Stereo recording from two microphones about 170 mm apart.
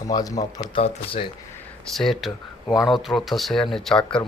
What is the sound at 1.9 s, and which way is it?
Speech, centre (ahead or behind).